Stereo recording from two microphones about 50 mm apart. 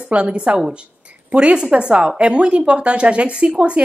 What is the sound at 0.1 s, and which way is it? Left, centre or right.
A woman's voice, right.